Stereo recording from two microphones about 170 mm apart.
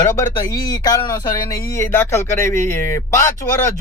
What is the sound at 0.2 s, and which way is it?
Speech, 20° left (ahead or behind).